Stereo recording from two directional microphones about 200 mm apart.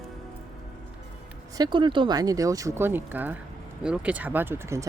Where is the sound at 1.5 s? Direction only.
20° right (ahead or behind).